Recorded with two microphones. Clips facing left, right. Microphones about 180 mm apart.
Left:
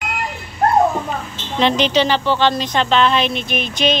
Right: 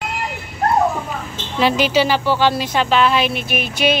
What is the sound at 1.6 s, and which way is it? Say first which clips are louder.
A woman's voice: even; 5° right (ahead or behind).